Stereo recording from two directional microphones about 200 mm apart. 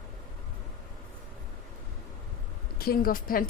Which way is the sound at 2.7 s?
50° left (ahead or behind).